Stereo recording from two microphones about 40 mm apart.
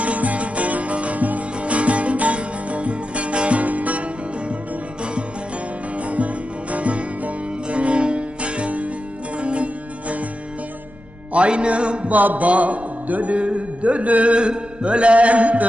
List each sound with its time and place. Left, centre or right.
0.0 s music: right
6.0 s music: right
11.3 s a sound: right
12.1 s a man's voice: right